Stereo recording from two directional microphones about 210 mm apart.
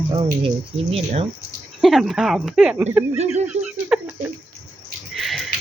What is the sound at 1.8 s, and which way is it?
Speech, centre (ahead or behind).